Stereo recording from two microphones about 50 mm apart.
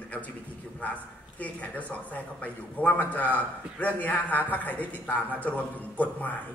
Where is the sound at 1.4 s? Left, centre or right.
Left.